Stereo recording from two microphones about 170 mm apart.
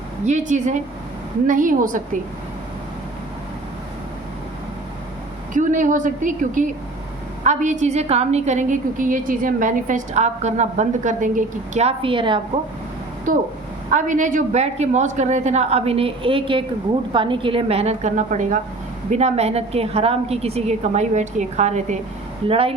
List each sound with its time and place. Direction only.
0.3 s a woman's voice: 45° right (ahead or behind)
5.5 s a woman's voice: 50° right (ahead or behind); by 12.4 s 30° right (ahead or behind)
13.3 s a woman's voice: 55° right (ahead or behind); by 22.7 s 35° right (ahead or behind)